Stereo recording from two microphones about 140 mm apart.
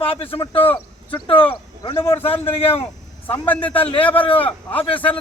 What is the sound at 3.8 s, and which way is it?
Speech, 40° left (ahead or behind).